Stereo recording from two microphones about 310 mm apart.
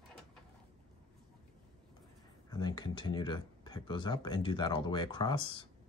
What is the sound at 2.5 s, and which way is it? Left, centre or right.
Speech, centre.